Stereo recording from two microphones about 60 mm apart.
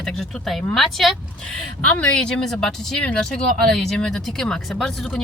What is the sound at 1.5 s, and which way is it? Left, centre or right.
Speech, left.